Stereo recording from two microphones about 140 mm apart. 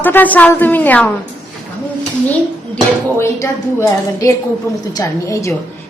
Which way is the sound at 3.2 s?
20° left (ahead or behind).